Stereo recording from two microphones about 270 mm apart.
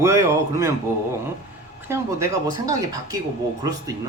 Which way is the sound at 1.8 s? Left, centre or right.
Centre.